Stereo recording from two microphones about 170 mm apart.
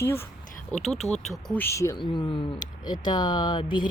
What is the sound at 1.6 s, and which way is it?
Speech, 20° left (ahead or behind).